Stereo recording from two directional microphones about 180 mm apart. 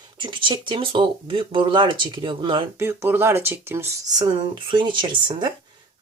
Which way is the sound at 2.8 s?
15° right (ahead or behind).